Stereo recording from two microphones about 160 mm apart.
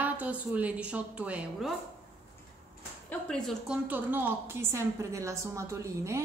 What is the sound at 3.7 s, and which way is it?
A woman's voice, 10° right (ahead or behind).